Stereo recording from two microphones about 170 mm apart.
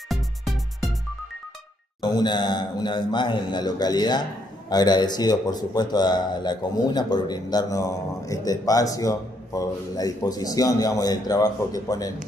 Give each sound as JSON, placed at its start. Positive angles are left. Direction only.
{"t": 0.1, "sound": "music", "side_deg": 0}
{"t": 2.0, "sound": "a man's voice", "side_deg": 25}